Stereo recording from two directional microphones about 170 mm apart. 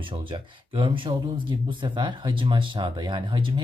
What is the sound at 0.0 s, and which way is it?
Speech, 30° right (ahead or behind).